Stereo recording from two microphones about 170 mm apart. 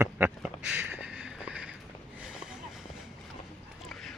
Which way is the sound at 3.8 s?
Centre (ahead or behind).